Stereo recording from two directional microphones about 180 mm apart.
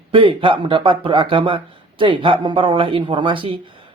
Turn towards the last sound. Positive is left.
turn(degrees=-30)  # may be behind; listen again after turning